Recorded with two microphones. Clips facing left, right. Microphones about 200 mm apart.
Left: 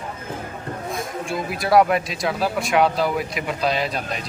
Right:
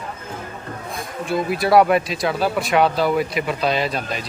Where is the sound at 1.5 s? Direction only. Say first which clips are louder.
Right 2 dB; centre (ahead or behind).